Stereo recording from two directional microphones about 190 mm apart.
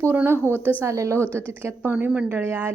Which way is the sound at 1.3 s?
10° left (ahead or behind).